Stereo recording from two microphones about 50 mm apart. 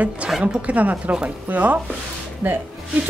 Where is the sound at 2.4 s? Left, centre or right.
Right.